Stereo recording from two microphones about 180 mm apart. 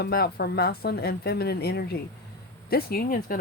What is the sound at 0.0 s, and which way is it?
Speech, 60° left (ahead or behind).